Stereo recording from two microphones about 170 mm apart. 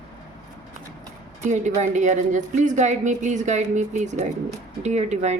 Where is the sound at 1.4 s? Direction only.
45° right (ahead or behind).